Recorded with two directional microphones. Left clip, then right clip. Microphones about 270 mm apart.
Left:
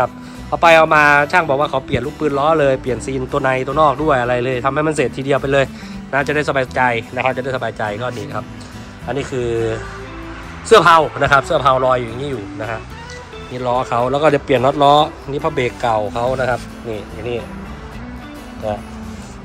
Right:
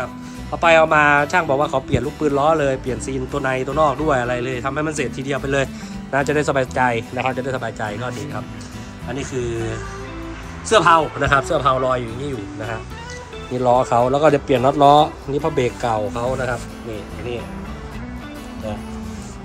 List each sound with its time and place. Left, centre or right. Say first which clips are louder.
0.0 s speech: left 9 dB; centre
6.1 s speech: left 2 dB; centre
13.6 s speech: right 2 dB; centre